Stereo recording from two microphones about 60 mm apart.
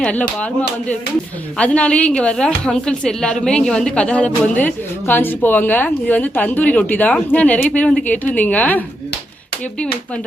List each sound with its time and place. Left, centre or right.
0.0 s a woman's voice: left
1.5 s a woman's voice: centre